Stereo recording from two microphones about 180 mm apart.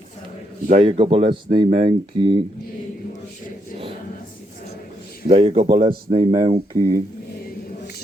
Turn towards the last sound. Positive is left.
turn(degrees=-20)  # may be behind; listen again after turning